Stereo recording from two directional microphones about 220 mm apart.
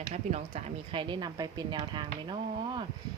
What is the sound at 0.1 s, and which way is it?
A woman's voice, 30° right (ahead or behind).